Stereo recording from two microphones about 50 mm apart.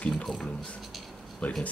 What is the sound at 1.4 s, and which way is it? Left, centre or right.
Speech, left.